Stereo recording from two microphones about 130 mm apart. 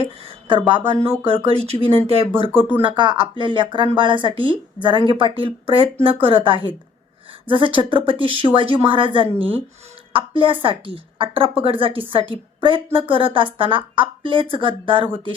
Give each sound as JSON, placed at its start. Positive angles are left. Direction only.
{"t": 0.0, "sound": "speech", "side_deg": -45}
{"t": 2.5, "sound": "speech", "side_deg": -15}
{"t": 2.8, "sound": "speech", "side_deg": -35}